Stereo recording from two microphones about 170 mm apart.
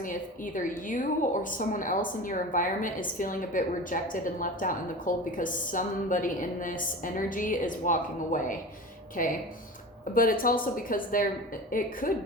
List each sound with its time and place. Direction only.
0.0 s a woman's voice: 50° left (ahead or behind)